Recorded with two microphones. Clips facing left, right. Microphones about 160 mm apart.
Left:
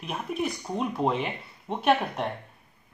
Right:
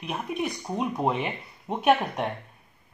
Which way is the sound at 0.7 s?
5° right (ahead or behind).